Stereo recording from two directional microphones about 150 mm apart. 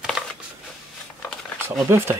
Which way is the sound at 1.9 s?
15° right (ahead or behind).